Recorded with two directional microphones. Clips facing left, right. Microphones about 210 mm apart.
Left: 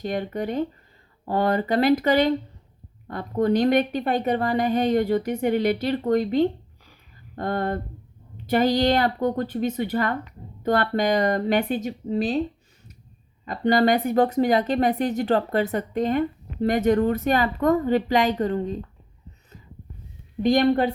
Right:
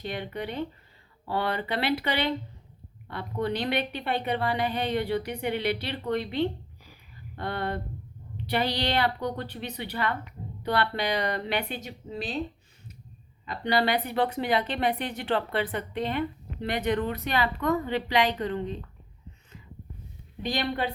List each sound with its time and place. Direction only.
0.0 s a woman's voice: 45° left (ahead or behind)
13.4 s a woman's voice: 45° left (ahead or behind)
20.4 s a woman's voice: 45° left (ahead or behind)